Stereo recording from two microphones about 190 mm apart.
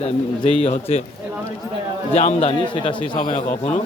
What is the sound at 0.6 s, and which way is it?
Speech, 30° left (ahead or behind).